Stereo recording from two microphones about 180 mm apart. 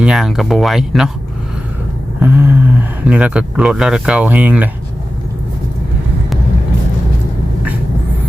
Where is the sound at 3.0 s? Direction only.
5° right (ahead or behind).